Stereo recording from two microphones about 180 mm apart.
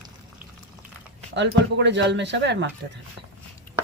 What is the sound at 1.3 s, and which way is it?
Speech, 80° right.